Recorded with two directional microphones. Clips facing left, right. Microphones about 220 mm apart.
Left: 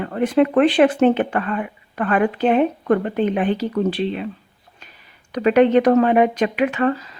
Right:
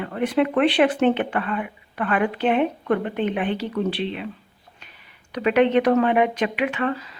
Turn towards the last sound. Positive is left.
turn(degrees=40)  # may be behind; listen again after turning